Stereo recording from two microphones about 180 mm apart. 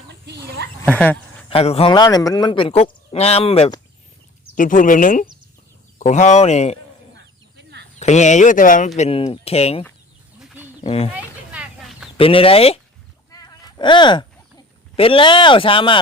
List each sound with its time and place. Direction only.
0.8 s speech: 5° left (ahead or behind)
1.5 s speech: 30° left (ahead or behind)
4.5 s speech: 45° left (ahead or behind)
7.9 s speech: 40° left (ahead or behind)
9.0 s speech: 30° left (ahead or behind)
11.1 s a sound: 5° right (ahead or behind)
12.1 s speech: 30° left (ahead or behind)
13.3 s a sound: 20° left (ahead or behind)
14.9 s speech: 30° left (ahead or behind)